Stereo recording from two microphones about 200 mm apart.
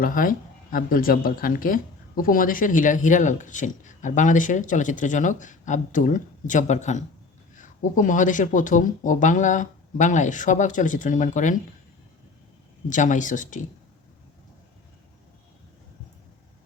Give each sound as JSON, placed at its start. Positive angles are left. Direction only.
{"t": 0.0, "sound": "speech", "side_deg": 45}
{"t": 12.9, "sound": "speech", "side_deg": 40}